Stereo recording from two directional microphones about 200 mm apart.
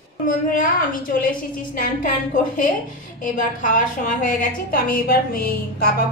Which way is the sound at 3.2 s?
40° left (ahead or behind).